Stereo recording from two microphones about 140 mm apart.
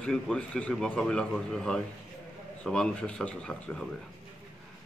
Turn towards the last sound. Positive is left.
turn(degrees=5)  # may be behind; listen again after turning